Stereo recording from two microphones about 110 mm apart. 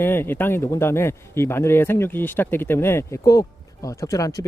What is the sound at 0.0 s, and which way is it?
Speech, 20° left (ahead or behind).